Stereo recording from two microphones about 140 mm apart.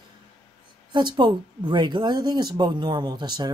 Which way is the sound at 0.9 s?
35° right (ahead or behind).